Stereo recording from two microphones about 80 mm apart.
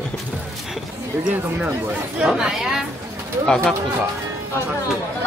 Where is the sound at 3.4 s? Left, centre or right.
Centre.